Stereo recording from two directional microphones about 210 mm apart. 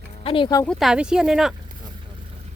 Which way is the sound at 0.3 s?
25° left (ahead or behind).